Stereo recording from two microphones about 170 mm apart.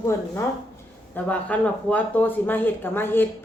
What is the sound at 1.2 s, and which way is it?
Speech, 10° left (ahead or behind).